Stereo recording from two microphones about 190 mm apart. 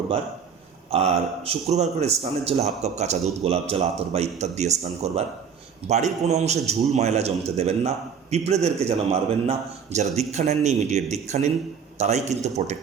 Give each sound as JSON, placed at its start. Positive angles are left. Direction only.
{"t": 0.9, "sound": "speech", "side_deg": -35}